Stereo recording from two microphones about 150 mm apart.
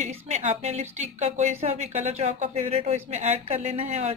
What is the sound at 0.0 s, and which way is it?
Speech, 50° right (ahead or behind).